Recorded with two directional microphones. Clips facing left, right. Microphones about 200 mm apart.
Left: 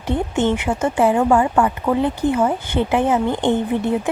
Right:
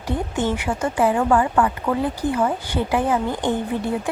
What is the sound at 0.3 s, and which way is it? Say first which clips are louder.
Speech: left 4 dB; 25° left (ahead or behind).